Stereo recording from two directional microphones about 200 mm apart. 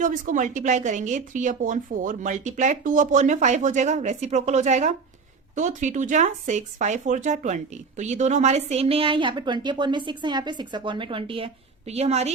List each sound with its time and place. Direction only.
0.0 s speech: 40° right (ahead or behind)